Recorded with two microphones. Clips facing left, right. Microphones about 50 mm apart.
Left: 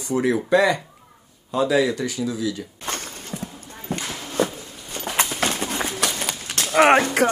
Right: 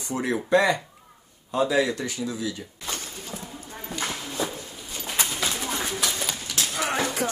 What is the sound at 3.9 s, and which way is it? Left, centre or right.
Clip-clop, left.